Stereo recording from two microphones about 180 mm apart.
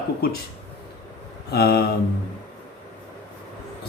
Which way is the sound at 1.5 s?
60° left (ahead or behind).